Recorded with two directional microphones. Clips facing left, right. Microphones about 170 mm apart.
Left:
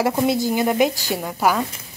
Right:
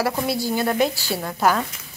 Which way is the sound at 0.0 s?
20° left (ahead or behind).